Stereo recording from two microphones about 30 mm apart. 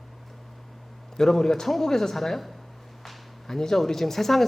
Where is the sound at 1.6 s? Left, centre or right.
Centre.